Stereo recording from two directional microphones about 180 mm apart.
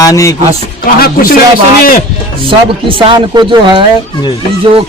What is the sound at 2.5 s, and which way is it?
Speech, 30° right (ahead or behind).